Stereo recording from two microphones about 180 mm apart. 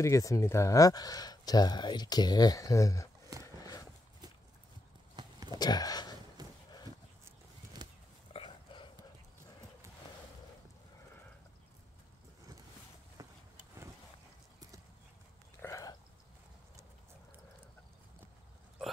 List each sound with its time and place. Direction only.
0.0 s speech: 15° left (ahead or behind)
3.4 s horse: 20° left (ahead or behind)
5.1 s clip-clop: 25° right (ahead or behind)
5.6 s speech: 20° left (ahead or behind)
6.4 s horse: 20° right (ahead or behind)
7.8 s pig: 25° right (ahead or behind)
8.3 s burping: 30° left (ahead or behind)
13.2 s a sound: 20° right (ahead or behind)
15.6 s a sound: 20° left (ahead or behind)